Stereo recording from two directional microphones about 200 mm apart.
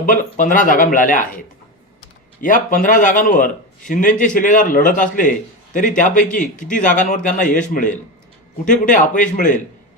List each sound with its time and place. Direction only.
0.0 s a man's voice: 40° left (ahead or behind)
8.6 s a man's voice: 40° left (ahead or behind)